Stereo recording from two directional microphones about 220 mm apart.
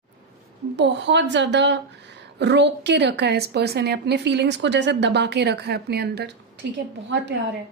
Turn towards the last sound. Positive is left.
turn(degrees=-50)  # may be behind; listen again after turning